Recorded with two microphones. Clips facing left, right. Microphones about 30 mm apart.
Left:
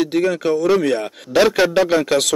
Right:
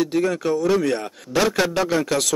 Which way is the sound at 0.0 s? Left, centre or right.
Left.